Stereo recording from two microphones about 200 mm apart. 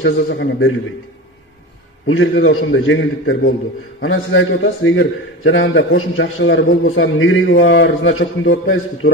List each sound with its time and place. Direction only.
0.0 s a man's voice: 70° left (ahead or behind)
2.3 s a man's voice: 75° left (ahead or behind)
4.0 s a man's voice: 75° left (ahead or behind)